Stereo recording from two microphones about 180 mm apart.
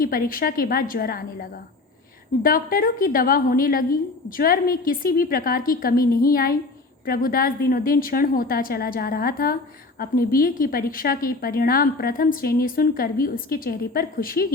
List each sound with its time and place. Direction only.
0.0 s a woman's voice: 50° left (ahead or behind)